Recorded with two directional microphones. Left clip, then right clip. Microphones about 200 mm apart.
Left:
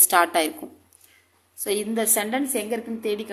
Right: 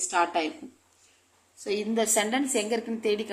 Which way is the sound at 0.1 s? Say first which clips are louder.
Left 6 dB; 30° left (ahead or behind).